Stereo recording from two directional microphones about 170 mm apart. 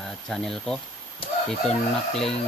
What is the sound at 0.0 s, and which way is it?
Speech, 5° left (ahead or behind).